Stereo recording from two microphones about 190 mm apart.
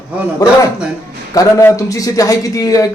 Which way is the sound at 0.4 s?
20° left (ahead or behind).